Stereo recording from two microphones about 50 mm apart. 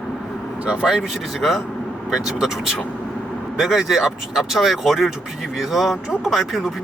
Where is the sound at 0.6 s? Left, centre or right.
Centre.